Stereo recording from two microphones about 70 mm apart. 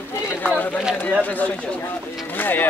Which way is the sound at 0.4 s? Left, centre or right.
Left.